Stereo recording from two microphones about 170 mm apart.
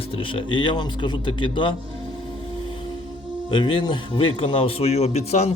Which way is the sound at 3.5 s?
30° left (ahead or behind).